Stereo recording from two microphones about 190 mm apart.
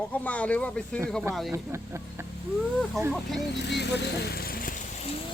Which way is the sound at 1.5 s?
15° right (ahead or behind).